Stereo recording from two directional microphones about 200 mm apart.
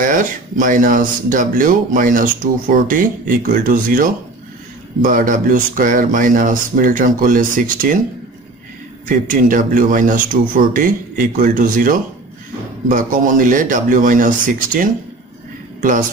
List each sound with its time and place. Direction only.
0.0 s speech: 40° right (ahead or behind)
9.0 s speech: 45° right (ahead or behind)